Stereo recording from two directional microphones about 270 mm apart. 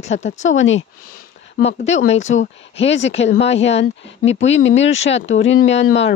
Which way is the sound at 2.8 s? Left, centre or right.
Left.